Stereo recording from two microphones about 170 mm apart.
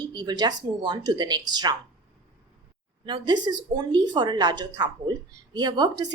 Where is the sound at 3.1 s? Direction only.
25° right (ahead or behind).